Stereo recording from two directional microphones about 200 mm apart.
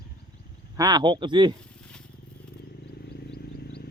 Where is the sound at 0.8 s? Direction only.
20° right (ahead or behind).